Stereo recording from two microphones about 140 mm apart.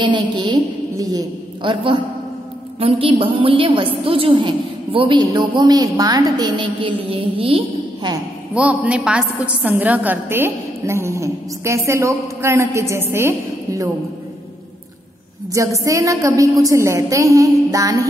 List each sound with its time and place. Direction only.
0.0 s a woman's voice: 35° right (ahead or behind)
8.5 s a woman's voice: 10° right (ahead or behind)
15.5 s a woman's voice: 25° right (ahead or behind)